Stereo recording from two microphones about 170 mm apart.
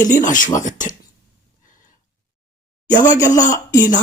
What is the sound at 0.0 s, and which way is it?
Speech, 50° left (ahead or behind).